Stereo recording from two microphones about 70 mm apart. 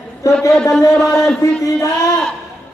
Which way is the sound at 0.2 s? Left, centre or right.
Left.